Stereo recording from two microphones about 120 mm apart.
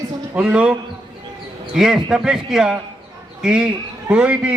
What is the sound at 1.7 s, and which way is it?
A man's voice, 5° right (ahead or behind).